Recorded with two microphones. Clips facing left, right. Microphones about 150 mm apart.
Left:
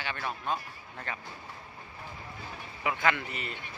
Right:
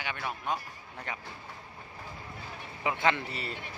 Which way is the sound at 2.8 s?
25° right (ahead or behind).